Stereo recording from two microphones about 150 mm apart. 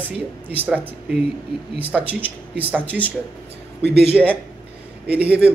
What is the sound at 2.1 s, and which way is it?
Speech, 10° right (ahead or behind).